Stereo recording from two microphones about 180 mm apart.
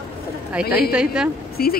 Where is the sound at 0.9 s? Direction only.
5° right (ahead or behind).